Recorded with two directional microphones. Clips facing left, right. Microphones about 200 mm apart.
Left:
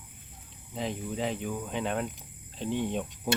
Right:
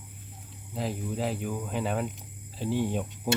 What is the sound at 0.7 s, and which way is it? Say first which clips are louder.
Speech: right 1 dB; 5° right (ahead or behind).